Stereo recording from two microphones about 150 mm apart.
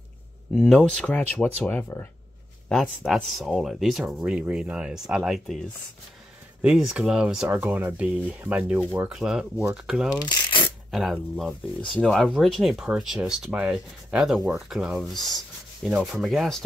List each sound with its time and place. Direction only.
0.6 s speech: 5° left (ahead or behind)
10.1 s a sound: 30° left (ahead or behind)
10.9 s speech: centre (ahead or behind)